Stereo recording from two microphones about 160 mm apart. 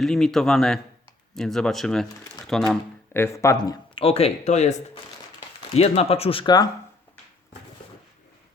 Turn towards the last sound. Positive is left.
turn(degrees=25)  # may be behind; listen again after turning